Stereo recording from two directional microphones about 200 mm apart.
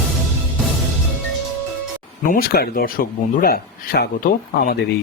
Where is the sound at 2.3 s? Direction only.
50° left (ahead or behind).